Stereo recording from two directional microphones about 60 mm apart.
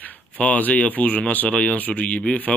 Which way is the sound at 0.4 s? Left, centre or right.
Left.